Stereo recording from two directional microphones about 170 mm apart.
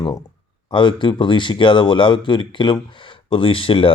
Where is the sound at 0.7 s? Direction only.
30° left (ahead or behind).